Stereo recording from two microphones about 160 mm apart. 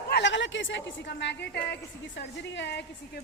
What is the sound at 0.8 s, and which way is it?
Speech, 90° left.